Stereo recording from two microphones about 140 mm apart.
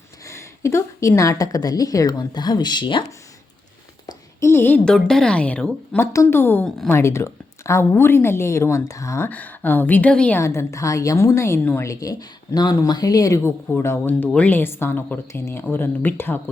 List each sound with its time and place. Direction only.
0.3 s speech: 20° left (ahead or behind)
4.0 s a sound: 20° left (ahead or behind)
4.9 s speech: 5° left (ahead or behind)
6.7 s speech: 5° left (ahead or behind)
6.9 s speech: 20° left (ahead or behind)
10.4 s speech: 20° left (ahead or behind)